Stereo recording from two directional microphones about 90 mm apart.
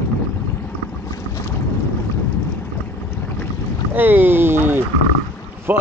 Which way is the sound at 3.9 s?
20° right (ahead or behind).